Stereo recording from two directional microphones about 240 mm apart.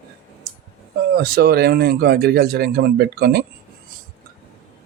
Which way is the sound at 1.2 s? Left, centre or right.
Right.